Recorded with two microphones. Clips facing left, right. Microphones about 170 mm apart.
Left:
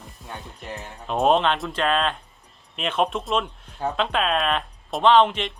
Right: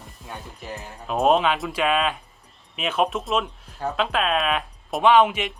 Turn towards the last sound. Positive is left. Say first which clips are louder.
# even
turn(degrees=-10)  # may be behind; listen again after turning